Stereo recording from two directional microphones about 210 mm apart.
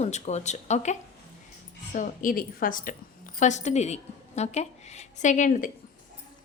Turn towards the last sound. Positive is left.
turn(degrees=35)  # may be behind; listen again after turning